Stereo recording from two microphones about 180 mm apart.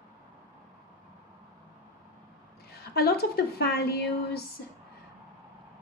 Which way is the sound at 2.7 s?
60° left (ahead or behind).